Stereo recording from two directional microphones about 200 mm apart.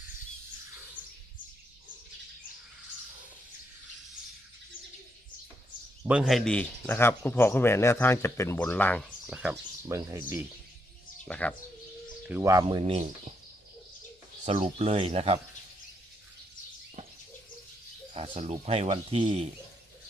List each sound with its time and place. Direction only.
6.1 s speech: 5° right (ahead or behind)
9.2 s speech: 5° right (ahead or behind)
11.3 s speech: 5° left (ahead or behind)
12.3 s speech: 15° right (ahead or behind); by 13.1 s 30° right (ahead or behind)
14.4 s speech: 35° right (ahead or behind)
18.1 s speech: 30° right (ahead or behind)